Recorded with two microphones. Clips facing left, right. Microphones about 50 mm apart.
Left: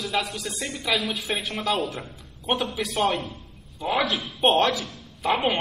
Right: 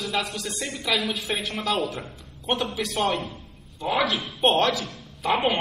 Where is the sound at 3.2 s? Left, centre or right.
Centre.